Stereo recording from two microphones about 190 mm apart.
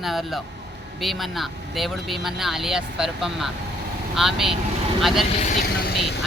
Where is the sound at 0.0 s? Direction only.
Centre (ahead or behind).